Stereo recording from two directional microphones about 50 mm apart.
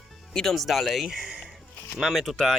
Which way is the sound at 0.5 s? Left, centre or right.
Centre.